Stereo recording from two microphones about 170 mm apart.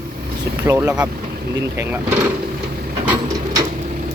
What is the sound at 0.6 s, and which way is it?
Speech, 15° right (ahead or behind).